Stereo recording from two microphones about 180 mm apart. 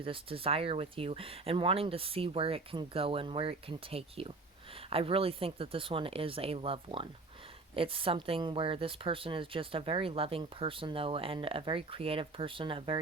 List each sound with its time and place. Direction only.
0.0 s speech: 30° right (ahead or behind)